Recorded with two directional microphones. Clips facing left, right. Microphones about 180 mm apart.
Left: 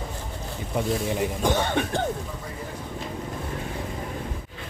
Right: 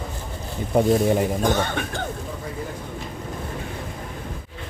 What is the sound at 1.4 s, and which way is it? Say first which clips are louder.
Speech: right 1 dB; 30° left (ahead or behind).